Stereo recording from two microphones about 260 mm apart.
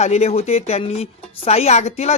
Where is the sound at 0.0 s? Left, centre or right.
Left.